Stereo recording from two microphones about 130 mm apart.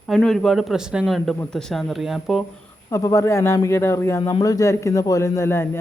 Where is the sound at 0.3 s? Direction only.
Centre (ahead or behind).